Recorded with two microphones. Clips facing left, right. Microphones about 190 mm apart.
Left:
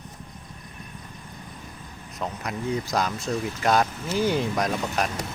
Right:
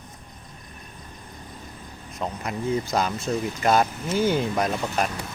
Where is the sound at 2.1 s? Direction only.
Centre (ahead or behind).